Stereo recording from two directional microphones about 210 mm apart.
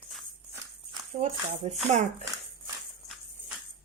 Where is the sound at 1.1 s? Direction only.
40° right (ahead or behind).